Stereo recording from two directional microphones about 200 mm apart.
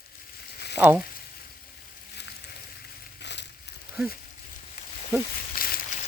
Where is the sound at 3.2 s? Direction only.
60° left (ahead or behind).